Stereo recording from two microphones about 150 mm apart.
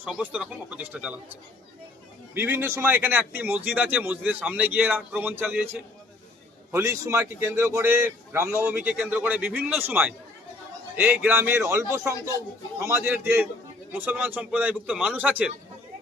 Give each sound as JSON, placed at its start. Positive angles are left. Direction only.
{"t": 0.0, "sound": "speech", "side_deg": -10}
{"t": 2.3, "sound": "speech", "side_deg": -15}
{"t": 6.7, "sound": "a man's voice", "side_deg": -20}